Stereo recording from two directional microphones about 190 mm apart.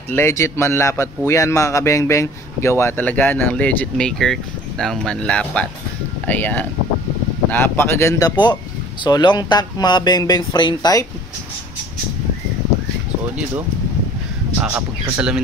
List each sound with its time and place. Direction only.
0.1 s a man's voice: 15° left (ahead or behind)
15.1 s speech: 5° right (ahead or behind)